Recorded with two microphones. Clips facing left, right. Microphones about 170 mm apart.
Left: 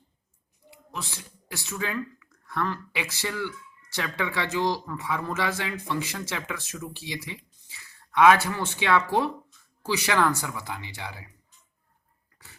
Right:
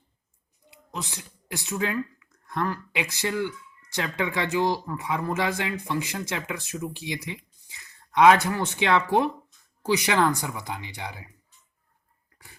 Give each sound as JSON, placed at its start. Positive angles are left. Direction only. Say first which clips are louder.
{"t": 0.7, "sound": "speech", "louder": "right 2 dB", "side_deg": -15}